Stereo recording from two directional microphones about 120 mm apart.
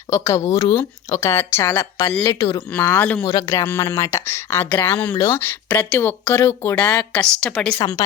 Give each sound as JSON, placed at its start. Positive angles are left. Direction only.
{"t": 0.1, "sound": "speech", "side_deg": 25}
{"t": 2.7, "sound": "a woman's voice", "side_deg": 15}
{"t": 3.2, "sound": "speech", "side_deg": 30}
{"t": 5.6, "sound": "speech", "side_deg": 15}
{"t": 6.7, "sound": "a woman's voice", "side_deg": 10}